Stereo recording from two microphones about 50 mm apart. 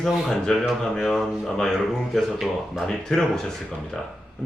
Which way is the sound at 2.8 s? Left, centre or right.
Centre.